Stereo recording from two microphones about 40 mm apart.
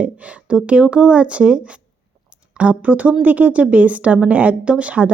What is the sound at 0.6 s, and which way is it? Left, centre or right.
A woman's voice, right.